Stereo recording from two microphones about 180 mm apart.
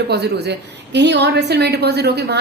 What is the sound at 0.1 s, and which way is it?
A woman's voice, 65° right (ahead or behind).